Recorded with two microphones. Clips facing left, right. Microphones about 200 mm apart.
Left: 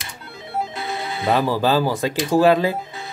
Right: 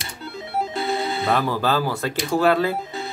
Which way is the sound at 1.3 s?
15° left (ahead or behind).